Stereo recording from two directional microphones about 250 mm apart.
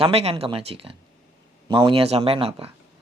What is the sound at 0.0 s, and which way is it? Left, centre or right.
Speech, right.